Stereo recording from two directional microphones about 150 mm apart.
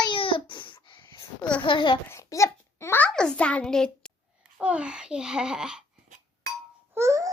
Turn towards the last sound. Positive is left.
turn(degrees=-20)  # may be behind; listen again after turning